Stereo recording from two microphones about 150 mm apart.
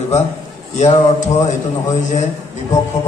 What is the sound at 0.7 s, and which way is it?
A man's voice, 50° left (ahead or behind).